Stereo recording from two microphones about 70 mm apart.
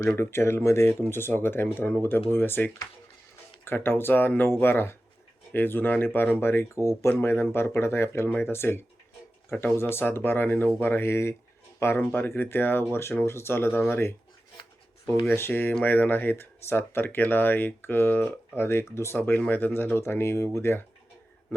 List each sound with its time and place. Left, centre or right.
0.2 s speech: left
15.3 s speech: left